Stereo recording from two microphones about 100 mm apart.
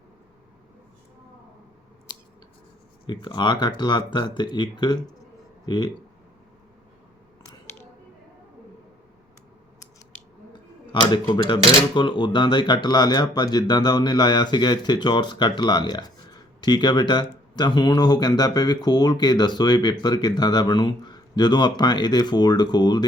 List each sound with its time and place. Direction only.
3.1 s speech: 50° left (ahead or behind)
11.0 s speech: 45° left (ahead or behind)